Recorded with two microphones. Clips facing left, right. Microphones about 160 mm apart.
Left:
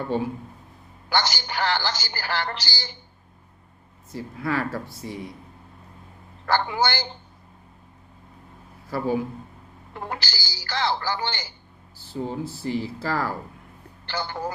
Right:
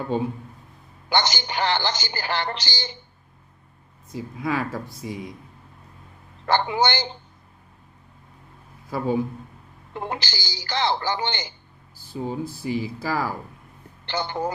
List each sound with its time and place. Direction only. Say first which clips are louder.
1.1 s a woman's voice: right 2 dB; 20° right (ahead or behind)
4.1 s speech: right 1 dB; 15° right (ahead or behind)
6.4 s a woman's voice: right 2 dB; 20° right (ahead or behind)
8.9 s a woman's voice: right 1 dB; 20° right (ahead or behind)